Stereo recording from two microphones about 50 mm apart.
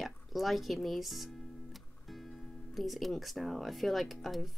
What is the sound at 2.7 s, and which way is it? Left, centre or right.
Speech, centre.